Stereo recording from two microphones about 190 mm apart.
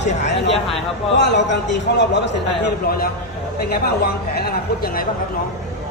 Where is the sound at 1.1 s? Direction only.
65° left (ahead or behind).